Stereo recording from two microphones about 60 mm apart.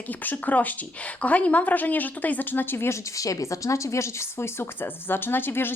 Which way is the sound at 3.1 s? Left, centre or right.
Left.